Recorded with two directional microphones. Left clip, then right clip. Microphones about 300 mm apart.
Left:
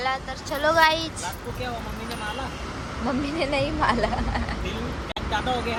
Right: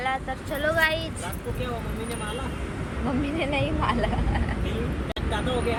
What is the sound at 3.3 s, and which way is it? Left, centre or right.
Speech, centre.